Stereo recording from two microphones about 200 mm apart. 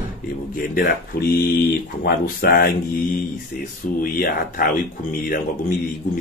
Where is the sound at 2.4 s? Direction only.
50° left (ahead or behind).